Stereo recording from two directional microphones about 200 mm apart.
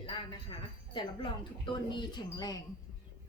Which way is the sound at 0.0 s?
25° left (ahead or behind).